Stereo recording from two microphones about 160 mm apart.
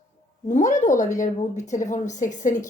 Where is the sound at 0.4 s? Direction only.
50° left (ahead or behind).